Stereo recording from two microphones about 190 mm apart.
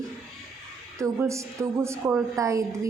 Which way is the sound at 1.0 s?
15° right (ahead or behind).